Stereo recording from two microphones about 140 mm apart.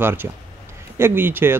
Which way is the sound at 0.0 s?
15° right (ahead or behind).